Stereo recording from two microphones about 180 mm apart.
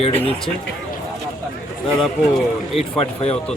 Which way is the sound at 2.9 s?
35° left (ahead or behind).